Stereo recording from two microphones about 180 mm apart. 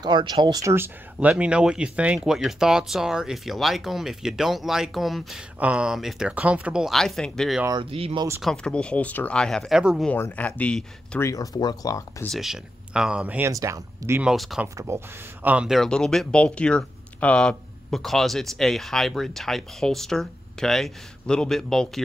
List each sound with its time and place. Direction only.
0.0 s speech: 25° right (ahead or behind); by 7.6 s centre (ahead or behind)
7.8 s speech: 30° right (ahead or behind)
8.4 s speech: 5° left (ahead or behind)
10.1 s speech: 10° left (ahead or behind)
11.2 s speech: 20° left (ahead or behind)
12.3 s speech: centre (ahead or behind)
14.3 s speech: centre (ahead or behind)
14.9 s speech: 15° right (ahead or behind); by 22.0 s centre (ahead or behind)